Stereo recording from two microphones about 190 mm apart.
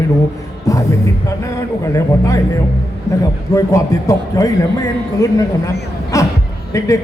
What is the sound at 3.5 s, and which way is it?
A man's voice, 15° left (ahead or behind).